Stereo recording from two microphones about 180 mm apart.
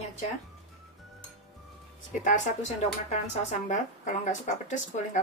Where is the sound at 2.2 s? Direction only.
45° left (ahead or behind).